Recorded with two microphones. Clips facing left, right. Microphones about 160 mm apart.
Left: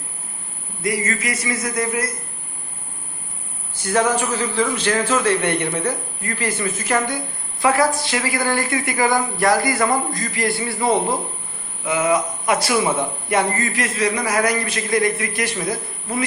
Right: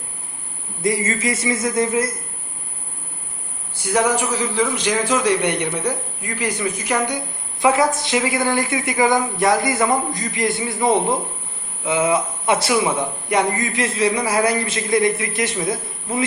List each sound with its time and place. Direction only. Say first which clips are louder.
0.8 s a man's voice: right 2 dB; 25° right (ahead or behind)
3.8 s a man's voice: even; 15° right (ahead or behind)